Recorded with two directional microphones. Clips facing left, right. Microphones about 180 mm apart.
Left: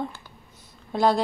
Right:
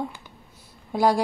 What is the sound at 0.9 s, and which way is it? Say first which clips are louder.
Speech: right 1 dB; 10° right (ahead or behind).